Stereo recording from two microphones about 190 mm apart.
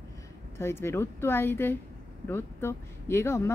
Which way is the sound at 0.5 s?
15° left (ahead or behind).